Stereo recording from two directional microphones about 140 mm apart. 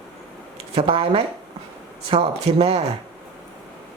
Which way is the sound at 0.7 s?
40° right (ahead or behind).